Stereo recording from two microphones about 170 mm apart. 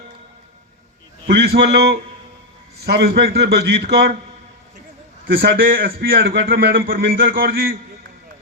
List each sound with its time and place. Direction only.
1.3 s a man's voice: 75° right (ahead or behind)
5.3 s a man's voice: 60° right (ahead or behind)